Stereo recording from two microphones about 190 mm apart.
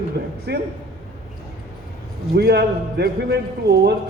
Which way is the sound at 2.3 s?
60° right (ahead or behind).